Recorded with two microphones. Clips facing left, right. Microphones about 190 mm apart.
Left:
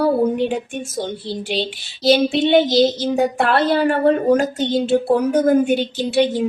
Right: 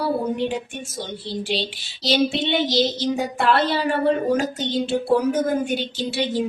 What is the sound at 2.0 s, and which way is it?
A woman's voice, 55° left (ahead or behind).